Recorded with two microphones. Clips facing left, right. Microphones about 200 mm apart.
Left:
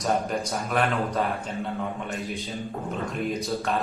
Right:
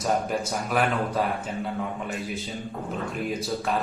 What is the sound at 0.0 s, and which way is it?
A man's voice, 5° right (ahead or behind).